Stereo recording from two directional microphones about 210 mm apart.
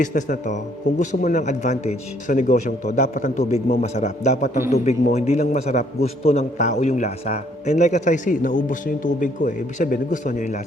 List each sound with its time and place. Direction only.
0.0 s a man's voice: 35° left (ahead or behind)